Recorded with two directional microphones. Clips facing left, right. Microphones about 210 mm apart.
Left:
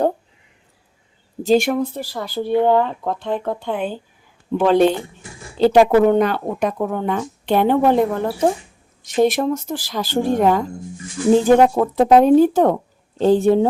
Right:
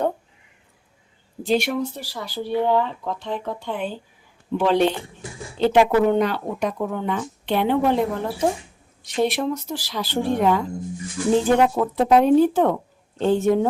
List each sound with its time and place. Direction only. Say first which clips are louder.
1.5 s speech: left 5 dB; 50° left (ahead or behind)
5.5 s speech: left 4 dB; 35° left (ahead or behind)